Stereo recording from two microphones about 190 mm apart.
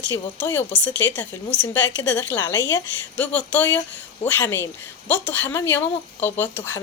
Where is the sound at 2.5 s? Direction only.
70° left (ahead or behind).